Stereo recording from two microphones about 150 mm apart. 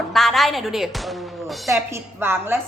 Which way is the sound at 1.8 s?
15° right (ahead or behind).